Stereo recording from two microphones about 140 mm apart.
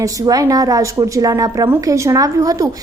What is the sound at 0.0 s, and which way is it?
A woman's voice, 25° right (ahead or behind).